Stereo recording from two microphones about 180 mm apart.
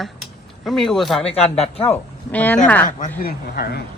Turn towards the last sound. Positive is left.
turn(degrees=60)  # may be behind; listen again after turning